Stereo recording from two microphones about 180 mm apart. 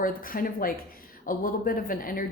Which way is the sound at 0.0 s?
50° left (ahead or behind).